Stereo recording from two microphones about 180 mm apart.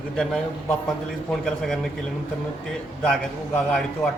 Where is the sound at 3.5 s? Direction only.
5° left (ahead or behind).